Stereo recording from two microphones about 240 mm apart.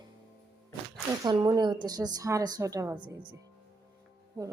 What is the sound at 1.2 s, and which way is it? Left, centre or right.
A woman's voice, centre.